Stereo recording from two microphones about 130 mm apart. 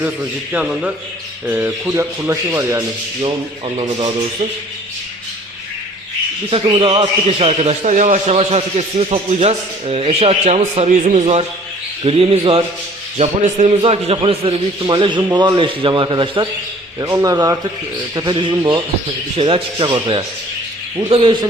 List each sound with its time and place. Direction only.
0.5 s a man's voice: 5° right (ahead or behind)
6.5 s speech: 45° right (ahead or behind)
7.3 s a man's voice: 50° right (ahead or behind)
8.4 s a man's voice: 50° right (ahead or behind)
17.0 s a man's voice: 25° right (ahead or behind); by 21.3 s 40° right (ahead or behind)